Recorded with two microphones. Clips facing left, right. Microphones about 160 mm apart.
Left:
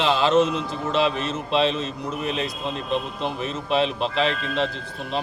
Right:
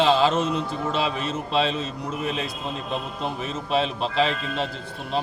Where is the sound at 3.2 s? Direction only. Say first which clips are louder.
Left 1 dB; 5° right (ahead or behind).